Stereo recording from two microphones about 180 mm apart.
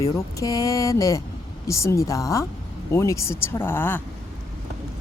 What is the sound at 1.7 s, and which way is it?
Speech, 15° left (ahead or behind).